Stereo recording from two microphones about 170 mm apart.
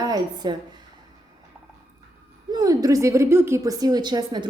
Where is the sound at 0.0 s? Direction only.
20° right (ahead or behind).